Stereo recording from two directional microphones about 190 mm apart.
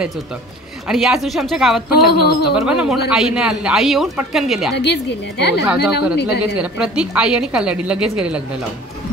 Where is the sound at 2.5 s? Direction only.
5° right (ahead or behind).